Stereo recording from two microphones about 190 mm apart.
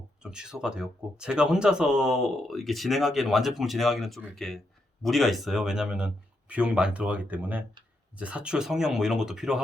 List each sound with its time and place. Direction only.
0.2 s speech: 5° right (ahead or behind)